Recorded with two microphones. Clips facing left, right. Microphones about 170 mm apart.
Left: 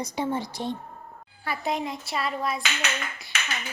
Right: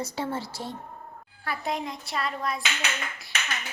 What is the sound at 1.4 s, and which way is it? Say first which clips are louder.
A child's voice: left 2 dB; centre (ahead or behind).